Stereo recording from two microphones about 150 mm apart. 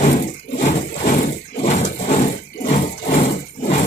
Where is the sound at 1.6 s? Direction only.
50° left (ahead or behind).